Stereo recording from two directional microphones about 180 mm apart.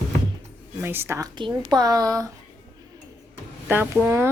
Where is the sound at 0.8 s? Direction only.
10° right (ahead or behind).